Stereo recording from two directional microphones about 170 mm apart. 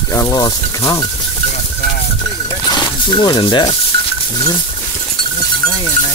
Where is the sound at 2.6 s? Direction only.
25° left (ahead or behind).